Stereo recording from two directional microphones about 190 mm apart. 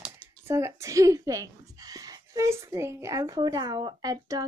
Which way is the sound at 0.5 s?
15° right (ahead or behind).